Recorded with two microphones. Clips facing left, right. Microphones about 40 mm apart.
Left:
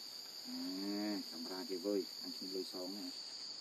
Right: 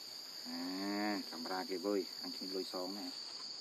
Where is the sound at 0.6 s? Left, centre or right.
Right.